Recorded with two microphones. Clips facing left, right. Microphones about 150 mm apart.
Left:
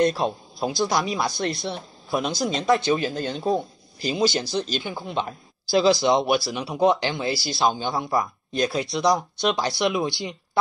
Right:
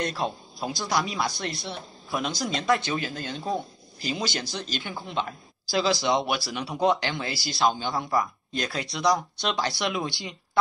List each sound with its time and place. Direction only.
0.0 s speech: 25° left (ahead or behind)